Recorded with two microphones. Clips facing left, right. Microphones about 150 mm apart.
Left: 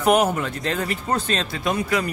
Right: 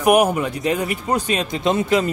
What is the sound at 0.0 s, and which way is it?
Speech, 10° right (ahead or behind).